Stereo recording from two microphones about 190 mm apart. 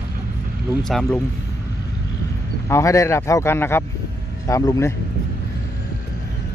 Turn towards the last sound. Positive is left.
turn(degrees=15)  # may be behind; listen again after turning